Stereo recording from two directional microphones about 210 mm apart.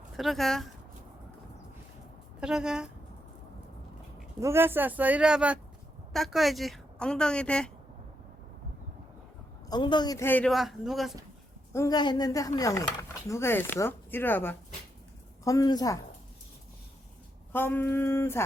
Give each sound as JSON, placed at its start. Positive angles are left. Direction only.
{"t": 0.2, "sound": "a woman's voice", "side_deg": 0}
{"t": 2.4, "sound": "a woman's voice", "side_deg": -5}
{"t": 4.4, "sound": "a woman's voice", "side_deg": -10}
{"t": 9.6, "sound": "speech", "side_deg": 20}
{"t": 11.7, "sound": "speech", "side_deg": 15}
{"t": 17.5, "sound": "speech", "side_deg": 10}